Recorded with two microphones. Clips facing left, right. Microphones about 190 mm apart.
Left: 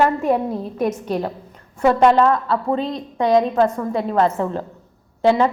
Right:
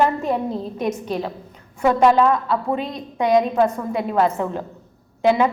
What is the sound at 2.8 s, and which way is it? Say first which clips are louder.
Speech: left 3 dB; 25° left (ahead or behind).